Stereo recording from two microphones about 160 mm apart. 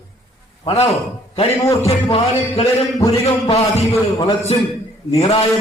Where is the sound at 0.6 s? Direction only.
40° left (ahead or behind).